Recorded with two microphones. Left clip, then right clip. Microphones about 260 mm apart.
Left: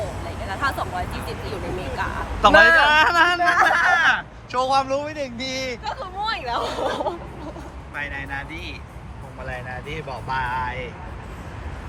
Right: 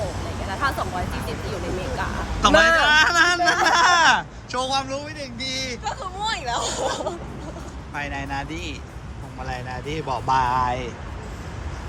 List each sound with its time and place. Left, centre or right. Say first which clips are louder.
0.4 s vehicle: even; centre
2.0 s speech: left 3 dB; centre
5.8 s speech: even; left
7.9 s speech: right 1 dB; centre